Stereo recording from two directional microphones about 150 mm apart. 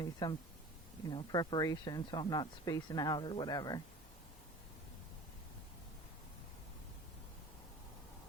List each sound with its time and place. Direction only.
0.0 s speech: 25° left (ahead or behind)